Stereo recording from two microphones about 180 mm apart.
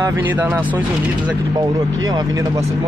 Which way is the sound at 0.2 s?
10° right (ahead or behind).